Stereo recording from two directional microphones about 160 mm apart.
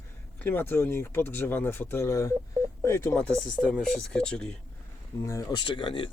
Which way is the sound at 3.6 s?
Centre (ahead or behind).